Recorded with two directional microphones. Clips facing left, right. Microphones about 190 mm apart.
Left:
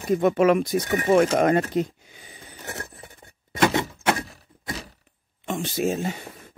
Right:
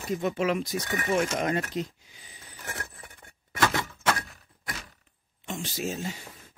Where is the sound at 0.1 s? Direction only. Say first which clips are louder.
Left 9 dB; 55° left (ahead or behind).